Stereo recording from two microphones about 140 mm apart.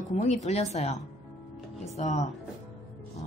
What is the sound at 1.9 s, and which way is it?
Speech, 55° left (ahead or behind).